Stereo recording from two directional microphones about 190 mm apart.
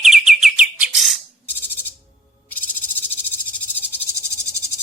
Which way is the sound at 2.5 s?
10° left (ahead or behind).